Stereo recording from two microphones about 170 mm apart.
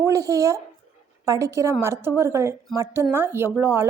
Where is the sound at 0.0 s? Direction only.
20° right (ahead or behind).